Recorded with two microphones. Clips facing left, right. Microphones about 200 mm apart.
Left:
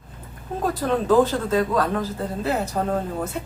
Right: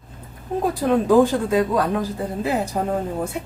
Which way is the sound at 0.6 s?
10° right (ahead or behind).